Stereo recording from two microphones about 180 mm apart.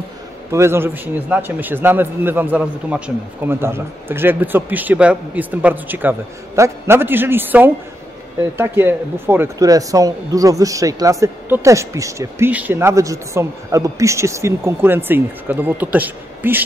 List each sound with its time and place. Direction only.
0.5 s speech: 15° right (ahead or behind)